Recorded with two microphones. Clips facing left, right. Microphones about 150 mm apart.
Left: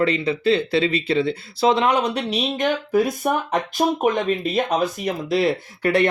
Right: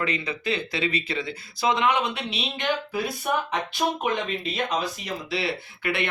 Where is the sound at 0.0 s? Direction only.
30° left (ahead or behind).